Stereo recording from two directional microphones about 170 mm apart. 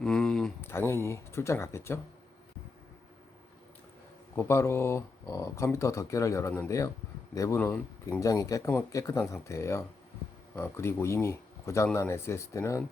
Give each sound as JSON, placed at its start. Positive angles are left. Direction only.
{"t": 0.0, "sound": "a sound", "side_deg": 5}
{"t": 0.7, "sound": "speech", "side_deg": 15}
{"t": 4.4, "sound": "speech", "side_deg": 15}